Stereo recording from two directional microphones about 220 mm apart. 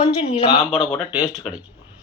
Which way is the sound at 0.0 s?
25° left (ahead or behind).